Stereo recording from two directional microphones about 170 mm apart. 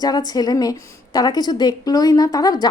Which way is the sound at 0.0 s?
25° left (ahead or behind).